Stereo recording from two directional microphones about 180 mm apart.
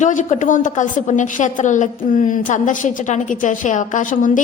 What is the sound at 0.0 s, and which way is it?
A woman's voice, 45° left (ahead or behind).